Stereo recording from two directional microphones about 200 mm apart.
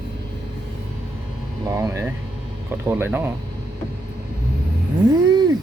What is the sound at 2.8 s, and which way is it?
Speech, 10° right (ahead or behind).